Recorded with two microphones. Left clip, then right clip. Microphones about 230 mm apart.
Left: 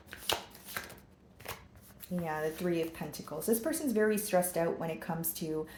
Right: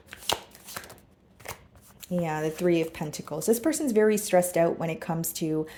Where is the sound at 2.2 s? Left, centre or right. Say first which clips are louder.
Right 7 dB; right.